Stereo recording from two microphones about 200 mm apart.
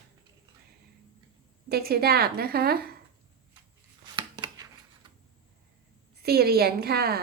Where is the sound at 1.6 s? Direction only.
50° right (ahead or behind).